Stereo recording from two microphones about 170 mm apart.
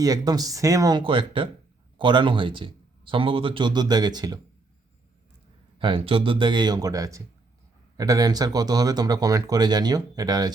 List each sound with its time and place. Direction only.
0.0 s speech: 20° right (ahead or behind)
5.8 s speech: 30° right (ahead or behind)